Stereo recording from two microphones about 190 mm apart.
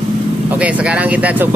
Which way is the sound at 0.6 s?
5° right (ahead or behind).